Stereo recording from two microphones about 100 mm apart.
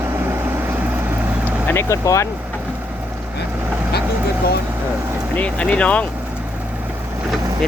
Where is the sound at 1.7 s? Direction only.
25° left (ahead or behind).